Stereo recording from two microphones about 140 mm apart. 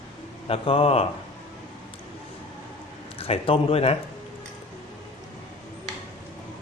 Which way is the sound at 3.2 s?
45° left (ahead or behind).